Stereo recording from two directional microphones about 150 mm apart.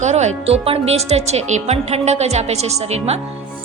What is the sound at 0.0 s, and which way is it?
A woman's voice, 50° right (ahead or behind).